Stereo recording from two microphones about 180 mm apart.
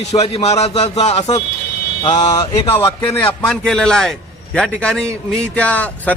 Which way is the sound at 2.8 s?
15° left (ahead or behind).